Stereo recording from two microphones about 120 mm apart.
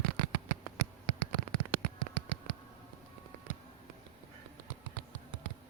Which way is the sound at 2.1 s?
45° left (ahead or behind).